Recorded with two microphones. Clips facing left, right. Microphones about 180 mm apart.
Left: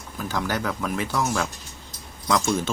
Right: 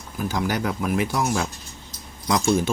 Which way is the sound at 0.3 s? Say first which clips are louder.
Right 2 dB; 15° right (ahead or behind).